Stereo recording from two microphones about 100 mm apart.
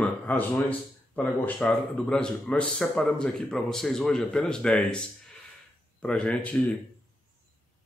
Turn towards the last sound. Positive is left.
turn(degrees=10)  # may be behind; listen again after turning